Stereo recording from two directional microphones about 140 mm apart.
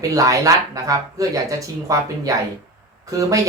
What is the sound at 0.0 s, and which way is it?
Speech, 25° right (ahead or behind).